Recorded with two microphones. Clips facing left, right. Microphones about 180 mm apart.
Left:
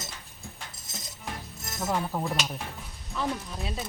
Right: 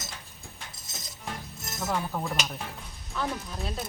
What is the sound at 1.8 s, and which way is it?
Speech, 10° left (ahead or behind).